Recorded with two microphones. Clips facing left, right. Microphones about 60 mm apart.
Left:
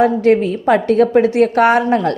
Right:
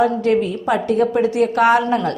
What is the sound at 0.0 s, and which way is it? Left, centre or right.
A woman's voice, left.